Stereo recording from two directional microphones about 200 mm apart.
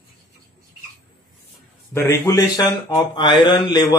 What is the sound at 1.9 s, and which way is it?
A man's voice, 15° left (ahead or behind).